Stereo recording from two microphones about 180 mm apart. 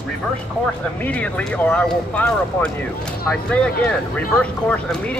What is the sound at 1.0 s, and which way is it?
Speech, 10° left (ahead or behind).